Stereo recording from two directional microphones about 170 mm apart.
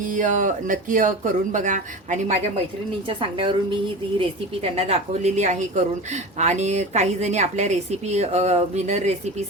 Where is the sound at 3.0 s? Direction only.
30° right (ahead or behind).